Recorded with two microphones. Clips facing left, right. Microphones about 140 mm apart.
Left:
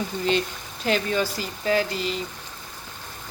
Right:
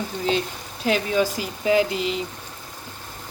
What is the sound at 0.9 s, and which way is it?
Speech, 5° right (ahead or behind).